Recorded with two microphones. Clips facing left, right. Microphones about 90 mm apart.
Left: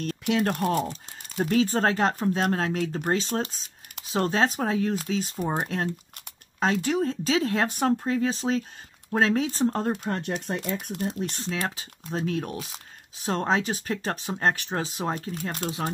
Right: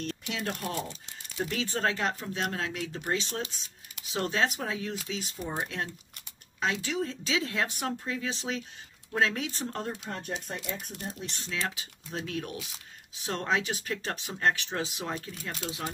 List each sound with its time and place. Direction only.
0.0 s speech: 55° left (ahead or behind); by 9.8 s 40° left (ahead or behind)
9.8 s speech: 65° left (ahead or behind)
11.3 s speech: 40° left (ahead or behind)